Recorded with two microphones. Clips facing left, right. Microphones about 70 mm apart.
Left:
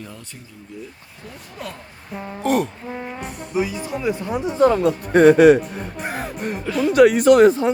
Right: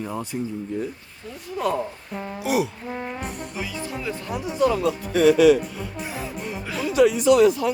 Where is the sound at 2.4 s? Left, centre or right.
Centre.